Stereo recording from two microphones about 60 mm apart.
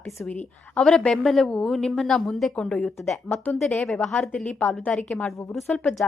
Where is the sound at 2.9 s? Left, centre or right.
Centre.